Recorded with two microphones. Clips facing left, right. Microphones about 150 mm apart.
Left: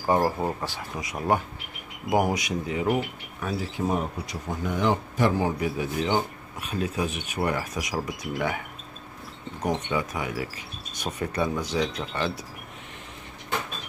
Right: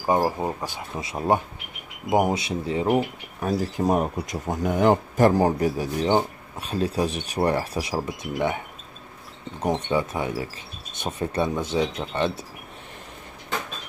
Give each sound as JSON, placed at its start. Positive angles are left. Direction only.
{"t": 0.0, "sound": "speech", "side_deg": -15}
{"t": 9.8, "sound": "speech", "side_deg": -30}